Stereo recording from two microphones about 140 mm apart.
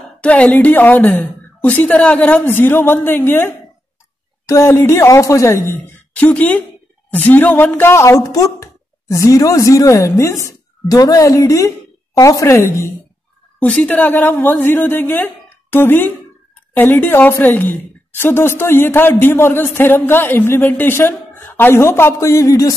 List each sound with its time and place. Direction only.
0.2 s a woman's voice: 10° left (ahead or behind)
13.6 s a woman's voice: 10° left (ahead or behind)